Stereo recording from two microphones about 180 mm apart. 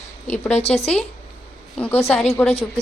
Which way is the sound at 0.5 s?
35° left (ahead or behind).